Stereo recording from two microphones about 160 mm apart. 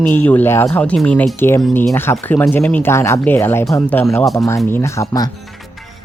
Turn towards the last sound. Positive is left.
turn(degrees=20)  # may be behind; listen again after turning